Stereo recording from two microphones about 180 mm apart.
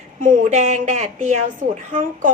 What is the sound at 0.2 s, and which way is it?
A woman's voice, 50° right (ahead or behind).